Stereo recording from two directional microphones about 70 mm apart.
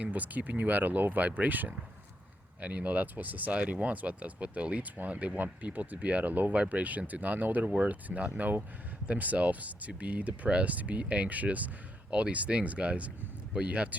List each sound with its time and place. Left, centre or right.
0.0 s speech: right